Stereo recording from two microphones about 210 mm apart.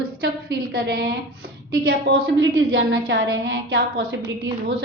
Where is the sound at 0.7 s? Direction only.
50° right (ahead or behind).